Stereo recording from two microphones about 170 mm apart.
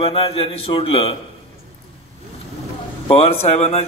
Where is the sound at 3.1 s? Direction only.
35° left (ahead or behind).